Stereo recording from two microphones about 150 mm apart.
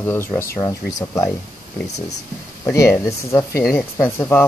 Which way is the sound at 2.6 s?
20° left (ahead or behind).